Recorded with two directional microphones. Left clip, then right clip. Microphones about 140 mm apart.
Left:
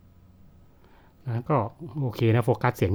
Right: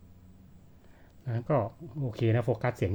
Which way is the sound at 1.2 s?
30° left (ahead or behind).